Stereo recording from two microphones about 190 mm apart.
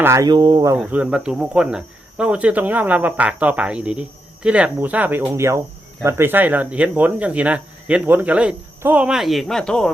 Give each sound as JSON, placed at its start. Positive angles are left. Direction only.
{"t": 0.0, "sound": "speech", "side_deg": -15}
{"t": 0.8, "sound": "speech", "side_deg": -5}